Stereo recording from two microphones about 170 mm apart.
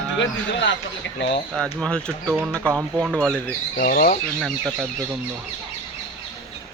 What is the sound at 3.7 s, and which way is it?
Speech, 55° left (ahead or behind).